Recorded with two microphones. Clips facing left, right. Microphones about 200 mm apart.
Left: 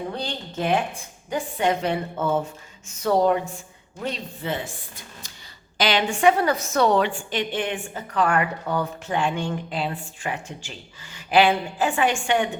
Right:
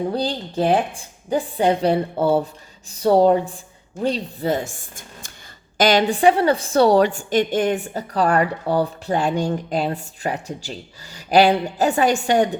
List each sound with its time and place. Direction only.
0.1 s a woman's voice: 35° right (ahead or behind)